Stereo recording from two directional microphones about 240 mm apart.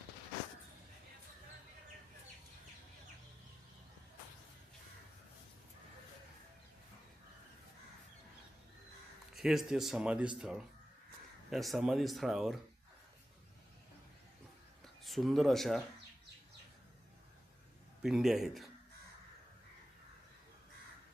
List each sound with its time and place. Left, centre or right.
9.3 s speech: centre
15.0 s speech: centre
18.0 s speech: centre